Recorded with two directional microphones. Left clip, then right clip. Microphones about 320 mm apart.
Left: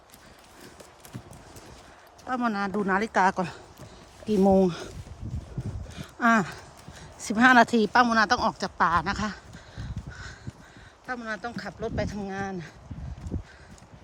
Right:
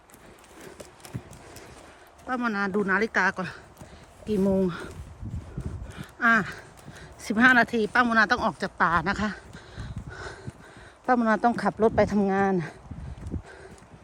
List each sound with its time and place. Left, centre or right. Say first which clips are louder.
2.3 s a woman's voice: right 1 dB; centre
6.1 s a sound: right 1 dB; centre
11.0 s speech: right 11 dB; centre